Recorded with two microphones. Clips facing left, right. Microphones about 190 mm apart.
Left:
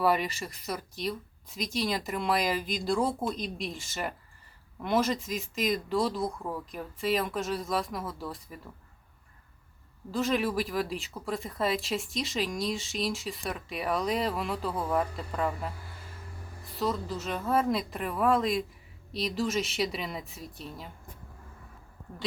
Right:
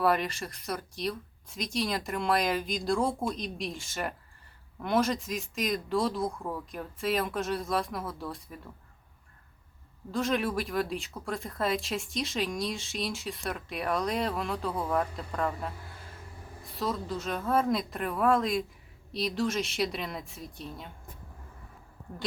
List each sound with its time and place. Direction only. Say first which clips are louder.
0.0 s speech: even; centre (ahead or behind)
10.1 s speech: left 1 dB; centre (ahead or behind)